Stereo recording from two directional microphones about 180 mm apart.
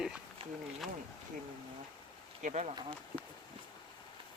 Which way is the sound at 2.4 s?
40° right (ahead or behind).